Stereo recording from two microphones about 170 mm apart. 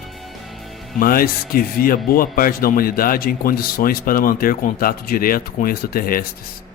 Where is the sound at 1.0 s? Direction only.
60° left (ahead or behind).